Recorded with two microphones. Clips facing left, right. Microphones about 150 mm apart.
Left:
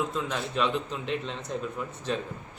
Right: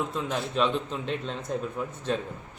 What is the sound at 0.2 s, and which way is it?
Speech, 30° right (ahead or behind).